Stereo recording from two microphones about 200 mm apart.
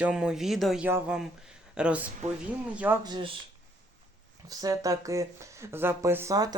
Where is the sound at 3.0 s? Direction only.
20° right (ahead or behind).